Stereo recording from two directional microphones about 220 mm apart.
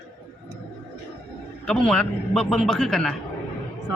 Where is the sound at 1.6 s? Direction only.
5° left (ahead or behind).